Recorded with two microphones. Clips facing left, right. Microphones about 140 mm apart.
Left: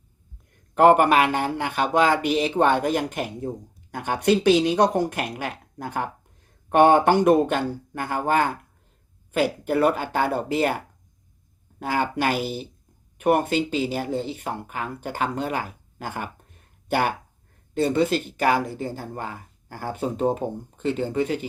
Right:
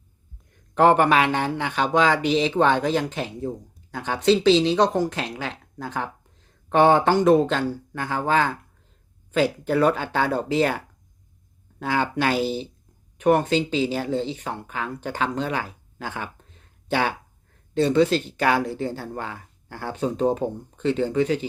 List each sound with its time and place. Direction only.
0.7 s speech: 10° left (ahead or behind)
11.9 s speech: 10° left (ahead or behind)
12.4 s speech: 30° right (ahead or behind)
13.1 s speech: 10° left (ahead or behind)